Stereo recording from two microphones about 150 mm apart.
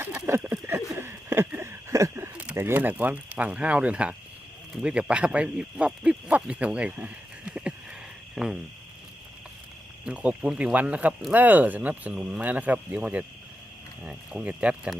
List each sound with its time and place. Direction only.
0.0 s a sound: 15° right (ahead or behind)
4.7 s speech: 5° right (ahead or behind)
8.4 s cricket: centre (ahead or behind)
10.0 s speech: 5° right (ahead or behind)